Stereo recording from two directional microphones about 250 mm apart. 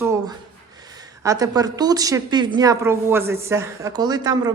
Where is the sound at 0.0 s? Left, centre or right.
Centre.